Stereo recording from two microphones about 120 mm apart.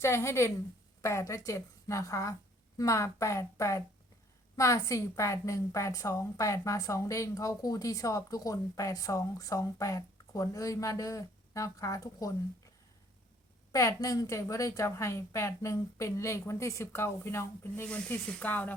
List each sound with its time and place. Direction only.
0.0 s a woman's voice: 20° left (ahead or behind)
13.7 s a woman's voice: 30° left (ahead or behind)